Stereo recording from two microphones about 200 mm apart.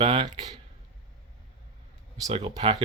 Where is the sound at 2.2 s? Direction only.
30° right (ahead or behind).